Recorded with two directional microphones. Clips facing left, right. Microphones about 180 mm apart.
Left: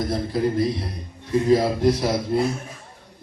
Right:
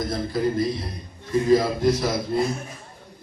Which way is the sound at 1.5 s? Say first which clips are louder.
Left 1 dB; 30° left (ahead or behind).